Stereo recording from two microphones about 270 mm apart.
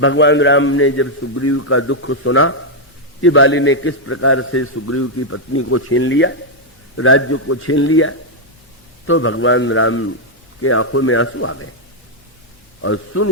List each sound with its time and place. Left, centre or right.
0.0 s a man's voice: left
12.8 s a man's voice: left